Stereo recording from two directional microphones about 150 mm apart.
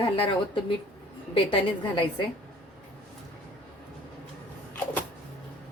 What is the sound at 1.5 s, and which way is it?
Speech, 35° left (ahead or behind).